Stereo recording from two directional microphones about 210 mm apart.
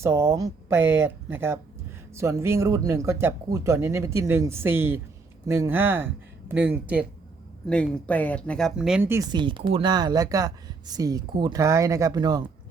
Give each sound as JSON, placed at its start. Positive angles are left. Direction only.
{"t": 0.0, "sound": "speech", "side_deg": -15}
{"t": 7.7, "sound": "speech", "side_deg": 5}